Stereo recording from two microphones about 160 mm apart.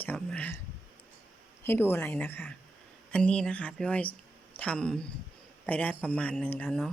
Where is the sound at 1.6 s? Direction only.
15° left (ahead or behind).